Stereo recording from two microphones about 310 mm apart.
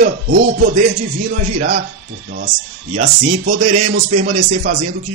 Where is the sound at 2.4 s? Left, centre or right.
Right.